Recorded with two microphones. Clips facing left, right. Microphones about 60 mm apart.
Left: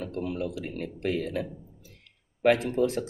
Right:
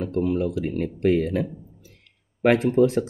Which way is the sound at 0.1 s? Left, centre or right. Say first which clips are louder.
Right 10 dB; right.